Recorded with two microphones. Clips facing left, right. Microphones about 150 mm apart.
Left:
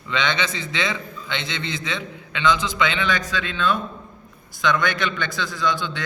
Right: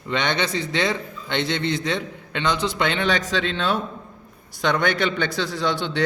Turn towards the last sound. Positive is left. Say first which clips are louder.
# right 1 dB
turn(degrees=-65)  # may be behind; listen again after turning